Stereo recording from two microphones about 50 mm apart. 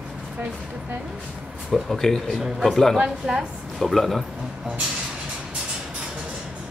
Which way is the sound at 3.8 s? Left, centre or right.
Centre.